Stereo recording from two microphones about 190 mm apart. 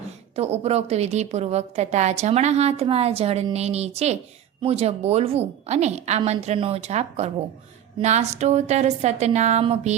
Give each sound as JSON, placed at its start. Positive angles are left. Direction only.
{"t": 0.3, "sound": "a woman's voice", "side_deg": -35}